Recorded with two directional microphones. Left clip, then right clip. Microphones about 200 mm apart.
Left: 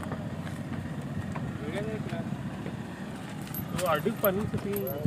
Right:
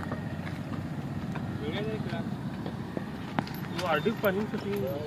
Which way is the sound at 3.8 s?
20° left (ahead or behind).